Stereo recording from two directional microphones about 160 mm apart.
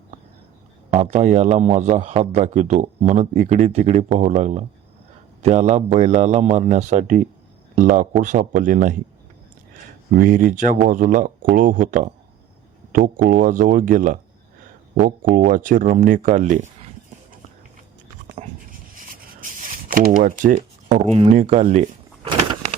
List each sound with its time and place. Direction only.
0.9 s a man's voice: 40° right (ahead or behind)
10.2 s speech: 55° right (ahead or behind)
19.9 s a man's voice: 60° right (ahead or behind)